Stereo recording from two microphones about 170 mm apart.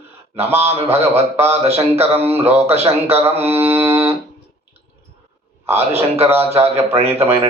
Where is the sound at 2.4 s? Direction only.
35° right (ahead or behind).